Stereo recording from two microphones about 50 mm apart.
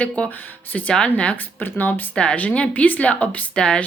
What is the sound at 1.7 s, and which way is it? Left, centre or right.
Speech, left.